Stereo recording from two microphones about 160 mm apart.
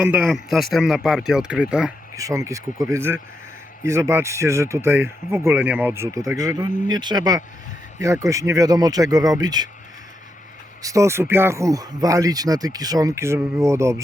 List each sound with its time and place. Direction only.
0.0 s speech: 10° right (ahead or behind)
2.1 s speech: 20° right (ahead or behind)
10.8 s speech: 20° right (ahead or behind)